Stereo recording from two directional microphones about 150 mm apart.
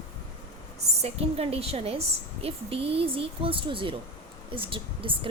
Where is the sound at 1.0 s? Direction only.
40° right (ahead or behind).